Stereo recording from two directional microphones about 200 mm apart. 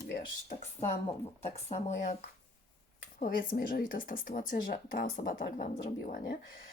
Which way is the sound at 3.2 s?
45° left (ahead or behind).